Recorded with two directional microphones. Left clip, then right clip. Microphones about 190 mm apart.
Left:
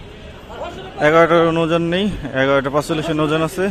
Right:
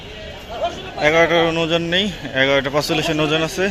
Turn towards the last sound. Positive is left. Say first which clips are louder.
# even
turn(degrees=20)  # may be behind; listen again after turning